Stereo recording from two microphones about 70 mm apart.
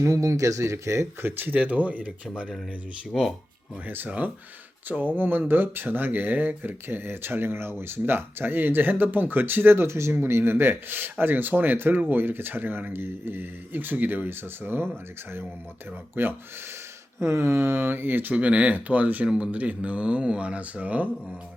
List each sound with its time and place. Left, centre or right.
0.0 s speech: right
1.4 s speech: right
3.1 s speech: centre
3.8 s speech: right
16.2 s speech: right